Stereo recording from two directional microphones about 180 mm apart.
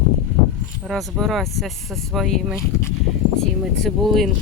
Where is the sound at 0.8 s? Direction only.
Centre (ahead or behind).